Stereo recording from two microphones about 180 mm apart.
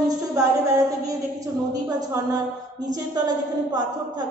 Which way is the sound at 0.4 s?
20° right (ahead or behind).